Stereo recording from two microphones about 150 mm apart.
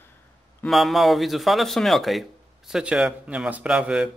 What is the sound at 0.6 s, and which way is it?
Speech, centre (ahead or behind).